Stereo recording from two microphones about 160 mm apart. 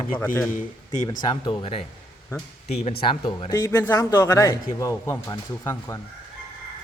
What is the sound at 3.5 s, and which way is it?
A man's voice, 20° left (ahead or behind).